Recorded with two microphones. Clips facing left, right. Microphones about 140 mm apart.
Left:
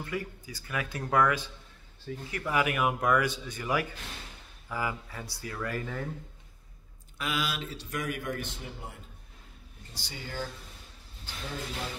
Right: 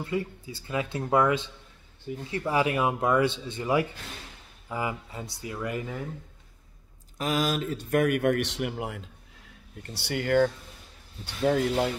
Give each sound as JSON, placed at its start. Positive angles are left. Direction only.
{"t": 0.0, "sound": "speech", "side_deg": -25}
{"t": 7.2, "sound": "speech", "side_deg": -40}
{"t": 9.8, "sound": "speech", "side_deg": -70}